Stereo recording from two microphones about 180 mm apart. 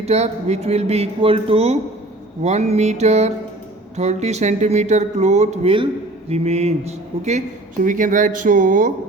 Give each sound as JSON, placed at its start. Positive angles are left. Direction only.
{"t": 0.0, "sound": "speech", "side_deg": -35}